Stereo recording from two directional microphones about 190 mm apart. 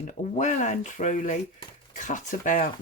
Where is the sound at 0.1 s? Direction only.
40° left (ahead or behind).